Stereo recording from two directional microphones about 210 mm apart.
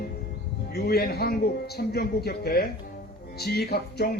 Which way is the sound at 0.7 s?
50° left (ahead or behind).